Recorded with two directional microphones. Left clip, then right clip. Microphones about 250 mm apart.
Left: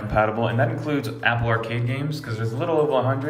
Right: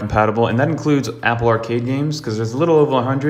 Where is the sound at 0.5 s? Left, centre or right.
Right.